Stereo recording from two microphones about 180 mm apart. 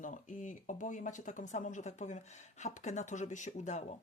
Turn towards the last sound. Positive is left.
turn(degrees=40)  # may be behind; listen again after turning